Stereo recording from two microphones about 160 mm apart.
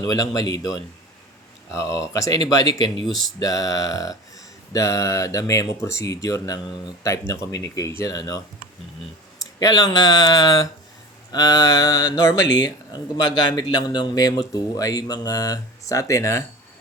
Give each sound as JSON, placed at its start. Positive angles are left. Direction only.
{"t": 0.0, "sound": "speech", "side_deg": 25}
{"t": 3.1, "sound": "speech", "side_deg": 0}
{"t": 3.4, "sound": "speech", "side_deg": 20}
{"t": 9.6, "sound": "speech", "side_deg": 25}